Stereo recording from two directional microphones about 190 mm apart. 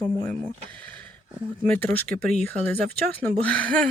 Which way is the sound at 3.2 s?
5° left (ahead or behind).